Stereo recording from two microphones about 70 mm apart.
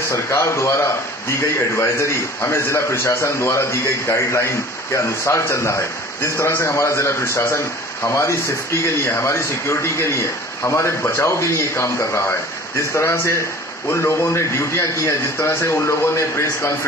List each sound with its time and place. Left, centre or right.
0.1 s a man's voice: left